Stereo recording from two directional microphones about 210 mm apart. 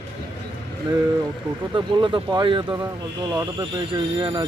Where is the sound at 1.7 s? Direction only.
20° right (ahead or behind).